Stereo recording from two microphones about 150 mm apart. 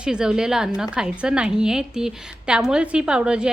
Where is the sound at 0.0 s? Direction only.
5° right (ahead or behind).